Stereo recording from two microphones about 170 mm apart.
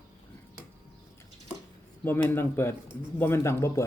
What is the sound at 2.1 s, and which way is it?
Speech, 15° left (ahead or behind).